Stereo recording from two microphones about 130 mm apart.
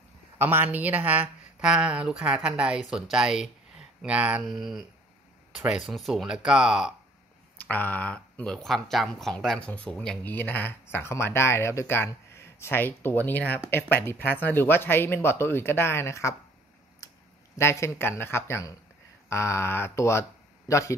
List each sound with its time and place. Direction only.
0.4 s speech: 15° right (ahead or behind)
7.5 s speech: 10° left (ahead or behind)
17.6 s speech: 20° left (ahead or behind)